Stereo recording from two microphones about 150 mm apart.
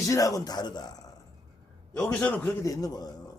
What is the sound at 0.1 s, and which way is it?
Speech, 25° left (ahead or behind).